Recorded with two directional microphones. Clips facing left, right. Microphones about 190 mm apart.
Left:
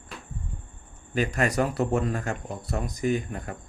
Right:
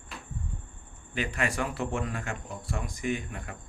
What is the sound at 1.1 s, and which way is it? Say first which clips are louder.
A man's voice: left 6 dB; 40° left (ahead or behind).